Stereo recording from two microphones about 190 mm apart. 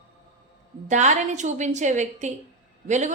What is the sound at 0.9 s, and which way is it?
A woman's voice, 40° right (ahead or behind).